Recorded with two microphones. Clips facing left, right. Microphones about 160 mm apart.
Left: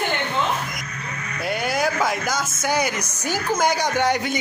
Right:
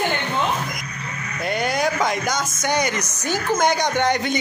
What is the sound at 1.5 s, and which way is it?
Speech, 5° left (ahead or behind).